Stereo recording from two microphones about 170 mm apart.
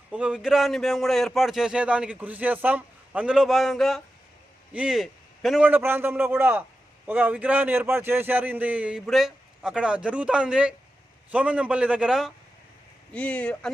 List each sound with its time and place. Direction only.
0.1 s a man's voice: 5° right (ahead or behind)
13.1 s speech: 10° left (ahead or behind)